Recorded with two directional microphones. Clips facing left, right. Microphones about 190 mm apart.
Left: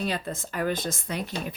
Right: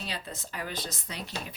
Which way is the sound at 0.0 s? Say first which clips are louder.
Left 9 dB; 50° left (ahead or behind).